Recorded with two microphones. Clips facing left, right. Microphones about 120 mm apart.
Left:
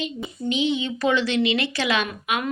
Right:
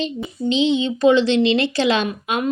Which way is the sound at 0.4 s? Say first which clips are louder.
Right 5 dB; 25° right (ahead or behind).